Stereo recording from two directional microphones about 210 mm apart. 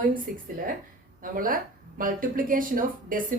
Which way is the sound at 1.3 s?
40° right (ahead or behind).